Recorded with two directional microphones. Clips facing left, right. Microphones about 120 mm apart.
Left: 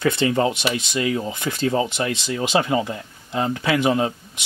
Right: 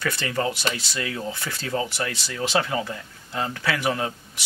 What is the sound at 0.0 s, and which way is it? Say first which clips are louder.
Speech: left 7 dB; 20° left (ahead or behind).